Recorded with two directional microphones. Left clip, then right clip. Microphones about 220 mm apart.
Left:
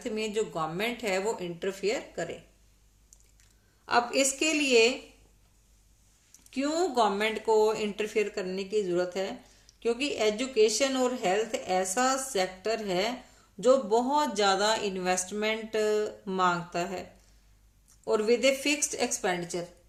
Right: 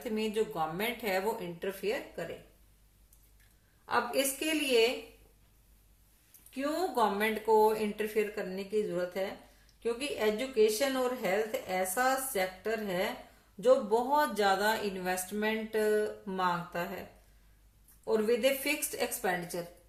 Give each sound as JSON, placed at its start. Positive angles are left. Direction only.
{"t": 0.0, "sound": "speech", "side_deg": 25}
{"t": 3.8, "sound": "speech", "side_deg": 35}
{"t": 6.5, "sound": "speech", "side_deg": 30}
{"t": 18.0, "sound": "speech", "side_deg": 35}